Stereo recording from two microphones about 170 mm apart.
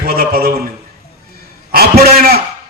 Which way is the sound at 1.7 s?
65° right (ahead or behind).